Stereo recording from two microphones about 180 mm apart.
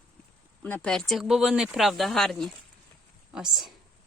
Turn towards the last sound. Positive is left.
turn(degrees=0)  # may be behind; listen again after turning